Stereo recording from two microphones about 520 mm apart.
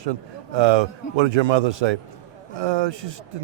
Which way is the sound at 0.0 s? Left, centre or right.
Right.